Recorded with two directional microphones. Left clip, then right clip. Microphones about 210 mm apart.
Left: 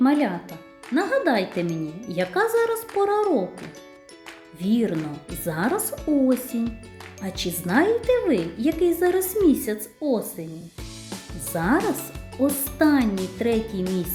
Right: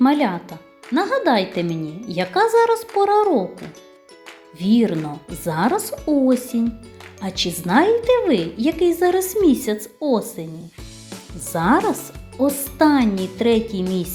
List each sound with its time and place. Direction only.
0.0 s speech: 10° right (ahead or behind)
4.6 s a woman's voice: 5° right (ahead or behind)
11.4 s a woman's voice: 5° right (ahead or behind)